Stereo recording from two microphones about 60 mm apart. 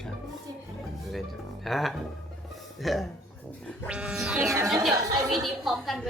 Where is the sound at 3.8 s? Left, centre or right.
Centre.